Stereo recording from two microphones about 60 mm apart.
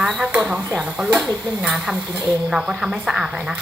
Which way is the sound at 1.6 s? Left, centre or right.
Centre.